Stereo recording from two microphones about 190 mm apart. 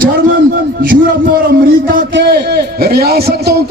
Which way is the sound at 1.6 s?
50° right (ahead or behind).